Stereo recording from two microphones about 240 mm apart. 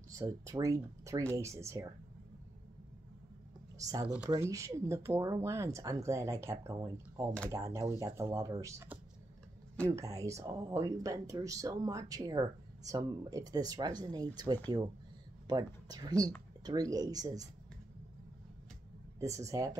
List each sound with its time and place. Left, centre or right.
0.1 s speech: centre
3.7 s speech: centre
19.1 s speech: centre